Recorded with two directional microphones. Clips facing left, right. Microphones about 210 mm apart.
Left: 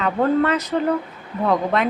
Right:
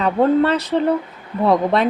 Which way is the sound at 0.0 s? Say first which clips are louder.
Right 3 dB; 30° right (ahead or behind).